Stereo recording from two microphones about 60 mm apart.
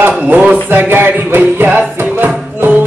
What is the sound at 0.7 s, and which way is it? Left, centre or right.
Music, right.